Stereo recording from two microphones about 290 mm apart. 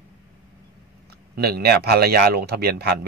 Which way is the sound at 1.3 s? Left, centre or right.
Right.